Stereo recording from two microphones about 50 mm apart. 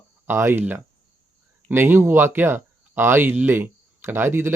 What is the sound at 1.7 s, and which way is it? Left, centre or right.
Speech, right.